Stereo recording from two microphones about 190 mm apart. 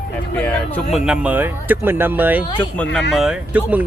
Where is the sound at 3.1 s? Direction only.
5° right (ahead or behind).